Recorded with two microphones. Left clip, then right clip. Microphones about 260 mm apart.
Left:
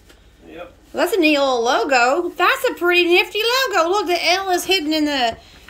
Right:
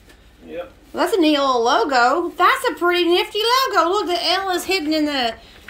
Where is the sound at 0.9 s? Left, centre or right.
Centre.